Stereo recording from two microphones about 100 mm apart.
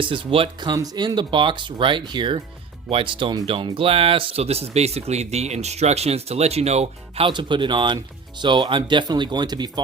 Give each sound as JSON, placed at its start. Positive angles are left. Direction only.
{"t": 0.0, "sound": "speech", "side_deg": -60}
{"t": 0.6, "sound": "speech", "side_deg": -45}
{"t": 7.3, "sound": "speech", "side_deg": -55}